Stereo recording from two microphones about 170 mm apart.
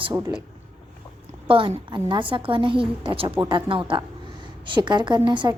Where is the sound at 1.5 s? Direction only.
30° right (ahead or behind).